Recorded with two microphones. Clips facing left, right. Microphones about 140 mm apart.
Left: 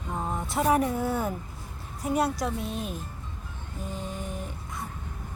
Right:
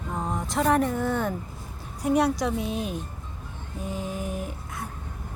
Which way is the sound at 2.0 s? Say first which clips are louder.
Right 4 dB; centre (ahead or behind).